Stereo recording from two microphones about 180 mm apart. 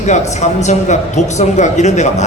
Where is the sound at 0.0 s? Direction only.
40° left (ahead or behind).